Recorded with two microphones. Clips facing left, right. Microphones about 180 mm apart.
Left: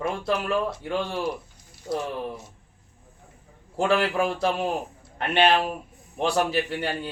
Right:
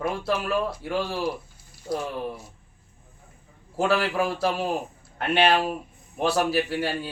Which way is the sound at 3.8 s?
5° right (ahead or behind).